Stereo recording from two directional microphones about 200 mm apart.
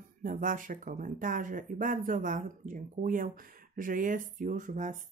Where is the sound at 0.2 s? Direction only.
40° right (ahead or behind).